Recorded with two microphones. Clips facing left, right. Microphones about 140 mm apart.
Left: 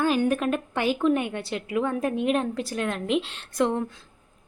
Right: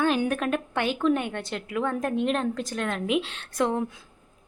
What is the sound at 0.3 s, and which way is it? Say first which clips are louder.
A woman's voice: left 2 dB; centre (ahead or behind).